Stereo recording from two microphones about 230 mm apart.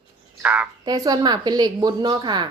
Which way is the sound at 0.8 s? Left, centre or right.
Centre.